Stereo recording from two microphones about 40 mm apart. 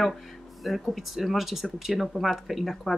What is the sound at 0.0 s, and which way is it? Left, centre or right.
Speech, centre.